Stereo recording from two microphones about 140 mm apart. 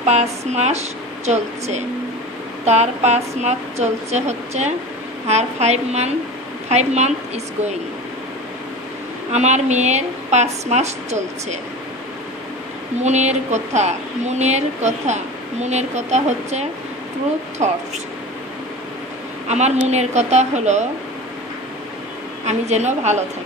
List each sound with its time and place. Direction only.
0.0 s a woman's voice: 50° right (ahead or behind)
9.3 s a woman's voice: 55° right (ahead or behind)
13.0 s a woman's voice: 55° right (ahead or behind)
19.9 s a woman's voice: 55° right (ahead or behind)
22.5 s a woman's voice: 55° right (ahead or behind)